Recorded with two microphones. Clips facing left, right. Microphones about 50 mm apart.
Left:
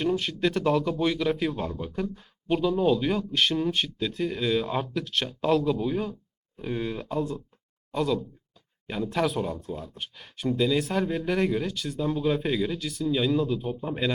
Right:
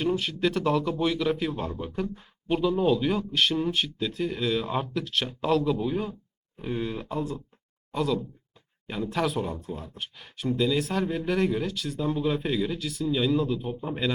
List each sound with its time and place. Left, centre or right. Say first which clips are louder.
0.4 s speech: left 1 dB; centre
1.7 s speech: even; right
2.6 s speech: even; centre
9.6 s speech: left 1 dB; right
9.9 s speech: even; centre
12.0 s speech: even; right
12.3 s speech: left 1 dB; centre